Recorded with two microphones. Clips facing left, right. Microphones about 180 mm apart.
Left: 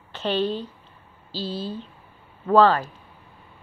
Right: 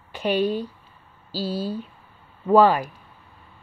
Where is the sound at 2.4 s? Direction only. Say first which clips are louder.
Right 1 dB; 10° right (ahead or behind).